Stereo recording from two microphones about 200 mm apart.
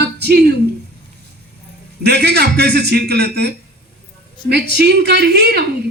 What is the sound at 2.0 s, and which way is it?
A man's voice, 55° right (ahead or behind).